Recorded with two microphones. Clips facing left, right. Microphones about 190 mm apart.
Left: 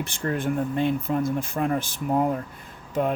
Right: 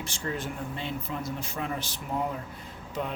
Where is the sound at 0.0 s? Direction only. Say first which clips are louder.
Left 7 dB; 55° left (ahead or behind).